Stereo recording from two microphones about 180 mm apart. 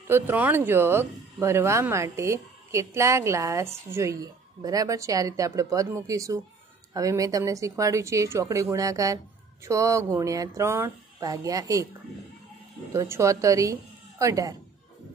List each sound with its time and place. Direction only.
0.1 s speech: 10° right (ahead or behind)
12.9 s a woman's voice: 15° right (ahead or behind)